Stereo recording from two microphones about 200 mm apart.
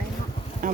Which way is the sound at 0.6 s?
40° right (ahead or behind).